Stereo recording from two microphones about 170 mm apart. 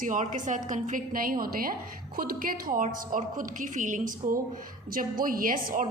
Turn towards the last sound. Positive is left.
turn(degrees=-55)  # may be behind; listen again after turning